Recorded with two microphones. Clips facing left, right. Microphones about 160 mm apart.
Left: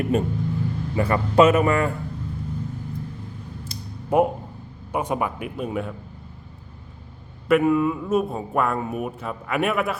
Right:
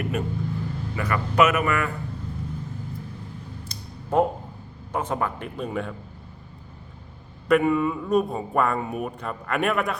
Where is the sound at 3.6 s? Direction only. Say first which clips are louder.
Left 5 dB; 10° left (ahead or behind).